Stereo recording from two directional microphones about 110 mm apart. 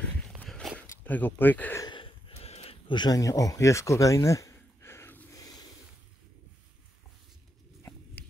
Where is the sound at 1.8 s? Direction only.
50° left (ahead or behind).